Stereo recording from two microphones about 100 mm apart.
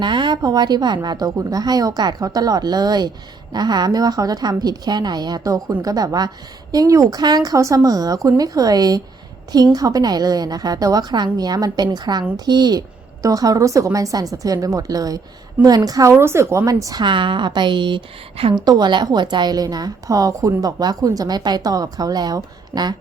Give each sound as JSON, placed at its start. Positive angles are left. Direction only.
{"t": 0.0, "sound": "a woman's voice", "side_deg": -50}
{"t": 17.0, "sound": "a woman's voice", "side_deg": -55}
{"t": 18.5, "sound": "a woman's voice", "side_deg": -45}